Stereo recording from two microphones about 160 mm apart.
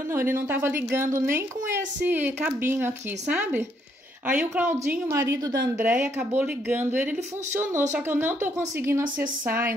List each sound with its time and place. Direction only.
0.1 s a woman's voice: 15° right (ahead or behind)